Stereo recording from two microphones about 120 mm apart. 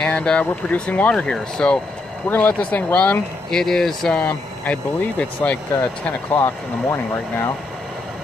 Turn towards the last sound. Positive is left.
turn(degrees=20)  # may be behind; listen again after turning